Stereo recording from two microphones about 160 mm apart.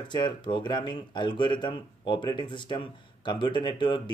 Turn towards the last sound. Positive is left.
turn(degrees=30)  # may be behind; listen again after turning